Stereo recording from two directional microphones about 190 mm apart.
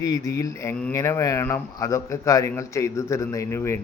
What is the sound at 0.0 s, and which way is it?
A man's voice, 20° left (ahead or behind).